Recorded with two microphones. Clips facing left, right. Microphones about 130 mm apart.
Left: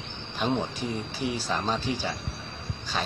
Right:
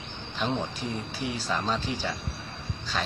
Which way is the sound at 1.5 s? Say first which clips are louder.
Left 1 dB; 5° left (ahead or behind).